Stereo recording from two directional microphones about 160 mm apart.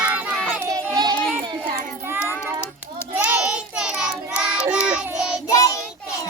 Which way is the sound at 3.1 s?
5° right (ahead or behind).